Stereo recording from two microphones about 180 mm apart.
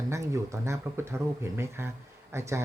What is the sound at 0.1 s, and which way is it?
Speech, 15° right (ahead or behind).